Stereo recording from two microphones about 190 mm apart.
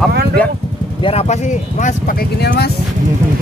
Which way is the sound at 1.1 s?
35° left (ahead or behind).